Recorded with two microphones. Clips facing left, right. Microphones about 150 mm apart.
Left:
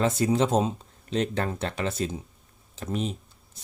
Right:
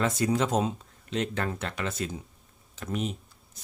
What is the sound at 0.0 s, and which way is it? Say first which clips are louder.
Speech: left 3 dB; 25° left (ahead or behind).